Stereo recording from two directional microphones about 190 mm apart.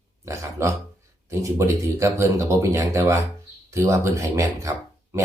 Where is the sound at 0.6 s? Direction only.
15° right (ahead or behind).